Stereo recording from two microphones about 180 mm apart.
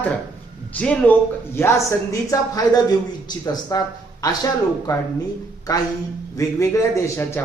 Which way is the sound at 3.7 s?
20° left (ahead or behind).